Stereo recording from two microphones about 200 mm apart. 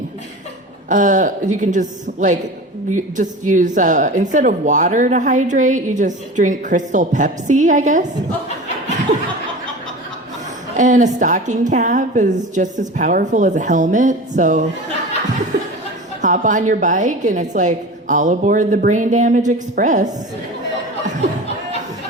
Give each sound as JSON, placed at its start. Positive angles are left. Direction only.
{"t": 0.9, "sound": "a woman's voice", "side_deg": -40}
{"t": 10.8, "sound": "a woman's voice", "side_deg": -40}
{"t": 16.2, "sound": "a woman's voice", "side_deg": -40}